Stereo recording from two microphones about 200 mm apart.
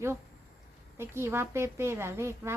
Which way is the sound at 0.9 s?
10° right (ahead or behind).